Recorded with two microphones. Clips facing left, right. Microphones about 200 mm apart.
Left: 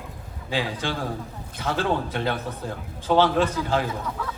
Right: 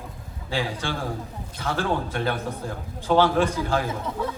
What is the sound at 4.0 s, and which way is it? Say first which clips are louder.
Speech: right 3 dB; 25° right (ahead or behind).